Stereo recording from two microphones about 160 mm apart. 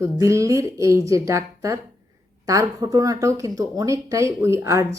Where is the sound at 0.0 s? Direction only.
20° right (ahead or behind).